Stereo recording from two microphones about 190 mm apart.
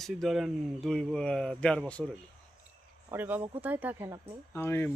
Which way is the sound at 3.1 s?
10° right (ahead or behind).